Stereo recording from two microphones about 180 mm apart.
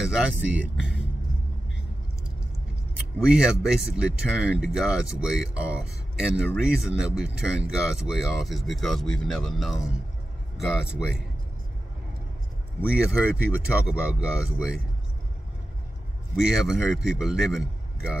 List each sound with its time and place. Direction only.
0.0 s speech: 5° right (ahead or behind)
3.2 s speech: 5° right (ahead or behind)
12.9 s speech: 5° right (ahead or behind)
16.3 s speech: 5° right (ahead or behind)